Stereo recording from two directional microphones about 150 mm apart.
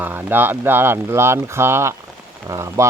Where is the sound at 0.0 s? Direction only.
10° right (ahead or behind).